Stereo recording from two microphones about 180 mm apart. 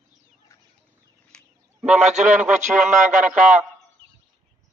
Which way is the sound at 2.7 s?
5° right (ahead or behind).